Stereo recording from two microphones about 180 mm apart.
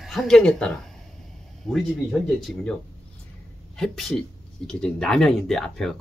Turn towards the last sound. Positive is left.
turn(degrees=0)  # may be behind; listen again after turning